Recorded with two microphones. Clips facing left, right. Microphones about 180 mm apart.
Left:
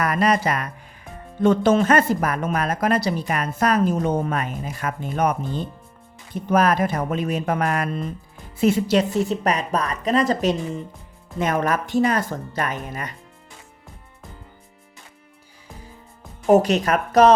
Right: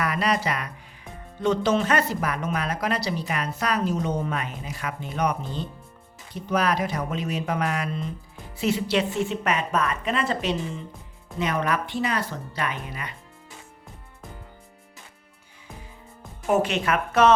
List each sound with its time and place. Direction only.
0.0 s speech: 45° left (ahead or behind)
16.5 s speech: 40° left (ahead or behind)